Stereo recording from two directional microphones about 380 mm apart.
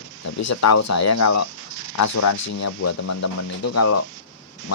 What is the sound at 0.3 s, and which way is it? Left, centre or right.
Speech, left.